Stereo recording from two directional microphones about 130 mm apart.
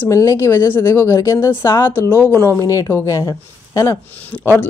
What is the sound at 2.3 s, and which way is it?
Speech, 20° left (ahead or behind).